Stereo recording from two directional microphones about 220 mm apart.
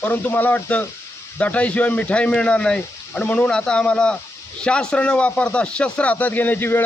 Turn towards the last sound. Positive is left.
turn(degrees=10)  # may be behind; listen again after turning